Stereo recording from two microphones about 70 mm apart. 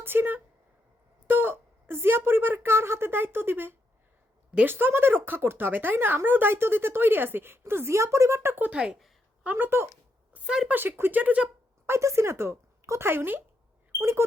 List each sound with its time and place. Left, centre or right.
0.0 s a woman's voice: right
8.7 s speech: centre
9.4 s speech: right
10.4 s speech: centre
10.7 s speech: right
11.9 s speech: right